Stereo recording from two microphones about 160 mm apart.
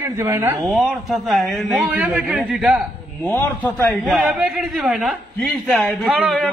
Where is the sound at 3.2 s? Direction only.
10° left (ahead or behind).